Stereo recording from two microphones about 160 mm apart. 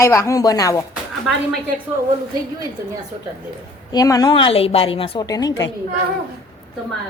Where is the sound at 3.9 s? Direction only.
20° left (ahead or behind).